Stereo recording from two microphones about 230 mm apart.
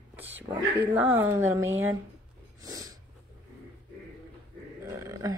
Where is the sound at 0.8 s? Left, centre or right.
Centre.